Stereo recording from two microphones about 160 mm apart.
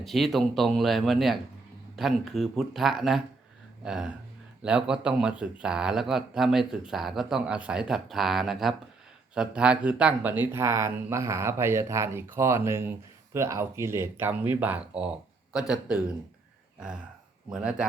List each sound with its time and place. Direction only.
0.0 s speech: centre (ahead or behind)
17.5 s speech: 5° right (ahead or behind)